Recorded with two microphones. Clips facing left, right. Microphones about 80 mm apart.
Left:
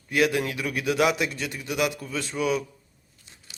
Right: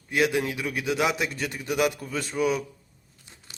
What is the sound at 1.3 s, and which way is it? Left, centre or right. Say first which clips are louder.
Speech: right 2 dB; right.